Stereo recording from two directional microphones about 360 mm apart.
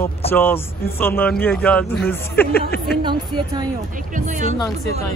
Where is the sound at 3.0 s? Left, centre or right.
Centre.